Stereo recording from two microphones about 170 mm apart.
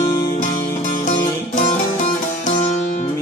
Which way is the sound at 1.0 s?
50° left (ahead or behind).